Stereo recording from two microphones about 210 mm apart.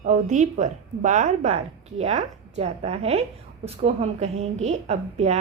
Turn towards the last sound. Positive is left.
turn(degrees=-30)  # may be behind; listen again after turning